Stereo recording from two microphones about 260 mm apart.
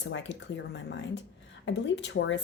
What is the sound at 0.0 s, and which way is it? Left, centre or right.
Speech, left.